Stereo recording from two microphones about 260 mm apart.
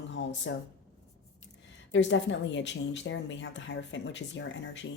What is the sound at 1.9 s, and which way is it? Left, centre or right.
Speech, left.